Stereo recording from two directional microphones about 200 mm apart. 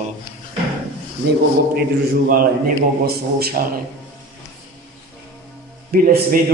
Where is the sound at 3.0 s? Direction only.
50° right (ahead or behind).